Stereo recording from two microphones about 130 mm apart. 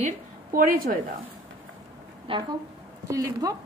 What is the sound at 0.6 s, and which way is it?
Speech, 90° right.